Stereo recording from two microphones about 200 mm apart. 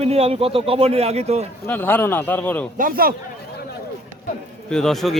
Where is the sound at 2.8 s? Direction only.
45° right (ahead or behind).